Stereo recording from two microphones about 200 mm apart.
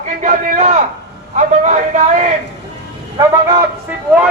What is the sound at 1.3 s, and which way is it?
Speech, 35° right (ahead or behind).